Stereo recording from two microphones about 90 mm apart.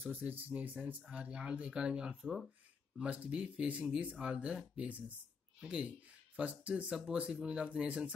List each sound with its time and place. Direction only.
0.0 s speech: 20° right (ahead or behind)